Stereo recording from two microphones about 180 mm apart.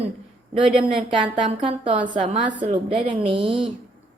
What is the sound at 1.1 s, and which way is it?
A woman's voice, 30° right (ahead or behind).